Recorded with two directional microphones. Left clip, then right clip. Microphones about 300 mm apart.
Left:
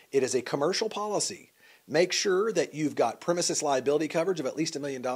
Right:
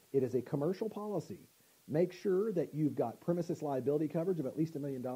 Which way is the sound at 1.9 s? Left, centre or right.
Centre.